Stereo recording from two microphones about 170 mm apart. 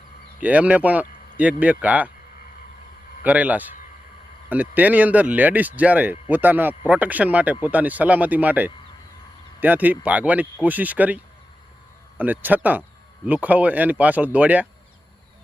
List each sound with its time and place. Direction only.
0.4 s speech: 10° right (ahead or behind)
3.2 s speech: 10° right (ahead or behind)